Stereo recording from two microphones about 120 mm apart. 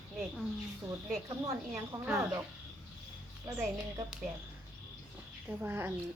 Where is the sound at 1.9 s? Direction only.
30° right (ahead or behind).